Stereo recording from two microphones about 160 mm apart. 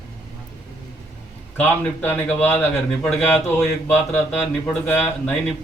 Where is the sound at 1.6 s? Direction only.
10° left (ahead or behind).